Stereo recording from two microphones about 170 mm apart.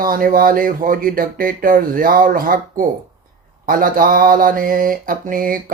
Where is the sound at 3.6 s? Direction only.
55° right (ahead or behind).